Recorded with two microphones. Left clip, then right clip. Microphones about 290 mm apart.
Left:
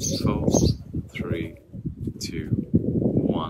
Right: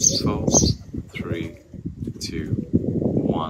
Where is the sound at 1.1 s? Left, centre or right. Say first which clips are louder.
Right 1 dB; centre.